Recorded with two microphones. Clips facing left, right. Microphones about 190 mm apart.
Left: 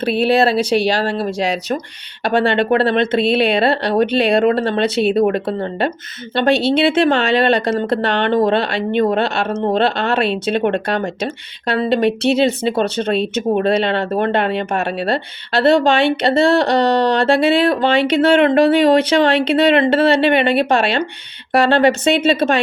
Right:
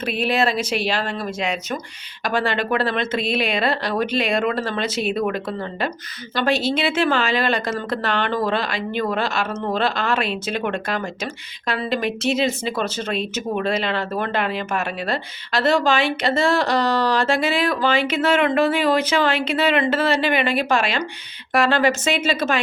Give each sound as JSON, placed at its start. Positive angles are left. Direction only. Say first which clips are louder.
{"t": 0.0, "sound": "a woman's voice", "louder": "left 7 dB", "side_deg": 30}